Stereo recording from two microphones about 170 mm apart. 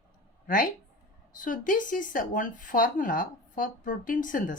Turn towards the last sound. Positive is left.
turn(degrees=50)  # may be behind; listen again after turning